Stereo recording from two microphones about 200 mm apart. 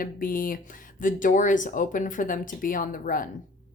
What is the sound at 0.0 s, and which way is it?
Speech, 45° left (ahead or behind).